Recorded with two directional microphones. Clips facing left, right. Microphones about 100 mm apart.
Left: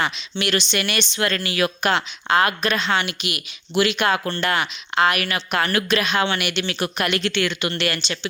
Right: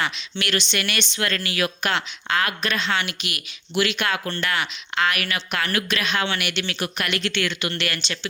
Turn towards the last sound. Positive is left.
turn(degrees=30)  # may be behind; listen again after turning